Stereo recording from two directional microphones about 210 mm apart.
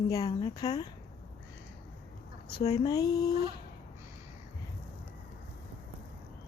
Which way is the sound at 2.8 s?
15° left (ahead or behind).